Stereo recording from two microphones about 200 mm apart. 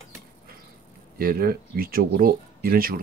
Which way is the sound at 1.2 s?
45° right (ahead or behind).